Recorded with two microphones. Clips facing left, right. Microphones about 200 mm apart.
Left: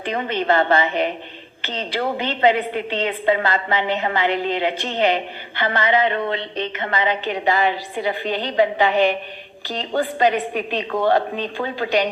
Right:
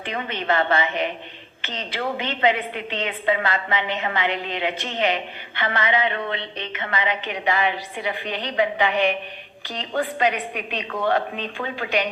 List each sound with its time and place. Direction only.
0.0 s a woman's voice: 35° left (ahead or behind)